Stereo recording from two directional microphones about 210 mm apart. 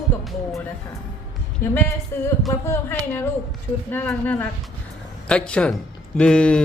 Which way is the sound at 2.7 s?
10° left (ahead or behind).